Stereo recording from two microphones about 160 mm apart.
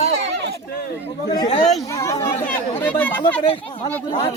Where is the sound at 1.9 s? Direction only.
20° left (ahead or behind).